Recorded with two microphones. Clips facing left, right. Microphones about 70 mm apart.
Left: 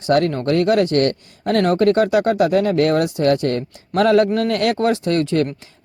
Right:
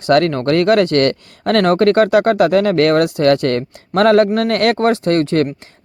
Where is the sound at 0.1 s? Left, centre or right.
Right.